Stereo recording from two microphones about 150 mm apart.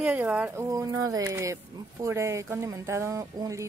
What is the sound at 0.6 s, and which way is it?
Speech, 20° right (ahead or behind).